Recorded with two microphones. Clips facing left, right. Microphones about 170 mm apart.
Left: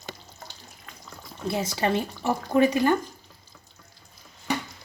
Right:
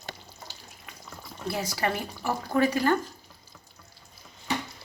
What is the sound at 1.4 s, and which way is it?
Speech, 25° left (ahead or behind).